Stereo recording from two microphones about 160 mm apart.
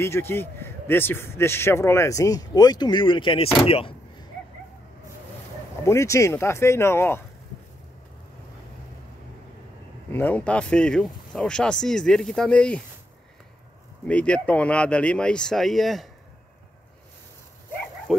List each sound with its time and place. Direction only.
0.0 s a man's voice: 15° left (ahead or behind); by 3.4 s 30° left (ahead or behind)
3.6 s door: 35° left (ahead or behind)
5.9 s a man's voice: 20° left (ahead or behind)
10.1 s speech: 10° left (ahead or behind)
14.0 s a man's voice: 5° left (ahead or behind)